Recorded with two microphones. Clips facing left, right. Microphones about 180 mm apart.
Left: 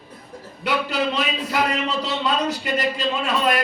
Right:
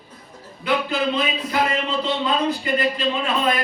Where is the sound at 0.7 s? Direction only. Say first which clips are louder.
Right 1 dB; 90° left.